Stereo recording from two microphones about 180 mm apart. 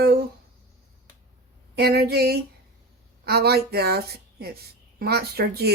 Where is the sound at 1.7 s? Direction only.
60° right (ahead or behind).